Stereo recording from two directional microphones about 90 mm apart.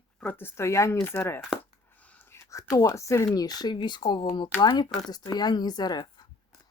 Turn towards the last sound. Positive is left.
turn(degrees=50)  # may be behind; listen again after turning